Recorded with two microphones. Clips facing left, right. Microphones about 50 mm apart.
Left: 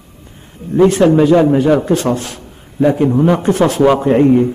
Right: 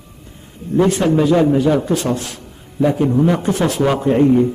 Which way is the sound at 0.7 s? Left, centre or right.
Left.